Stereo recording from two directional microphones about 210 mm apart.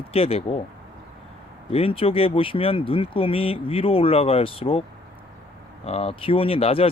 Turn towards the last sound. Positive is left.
turn(degrees=25)  # may be behind; listen again after turning